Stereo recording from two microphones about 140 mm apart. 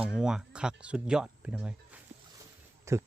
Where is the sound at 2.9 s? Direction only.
20° right (ahead or behind).